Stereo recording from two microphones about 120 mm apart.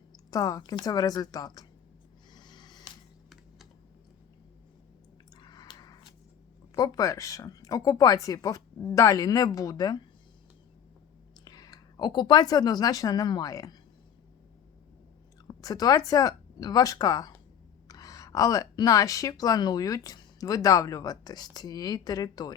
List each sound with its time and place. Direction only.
0.3 s a woman's voice: 30° left (ahead or behind)
2.3 s a sound: 40° left (ahead or behind)
5.3 s a sound: 35° left (ahead or behind)
6.7 s a woman's voice: 30° left (ahead or behind)
11.4 s speech: 35° left (ahead or behind)
15.4 s a woman's voice: 30° left (ahead or behind)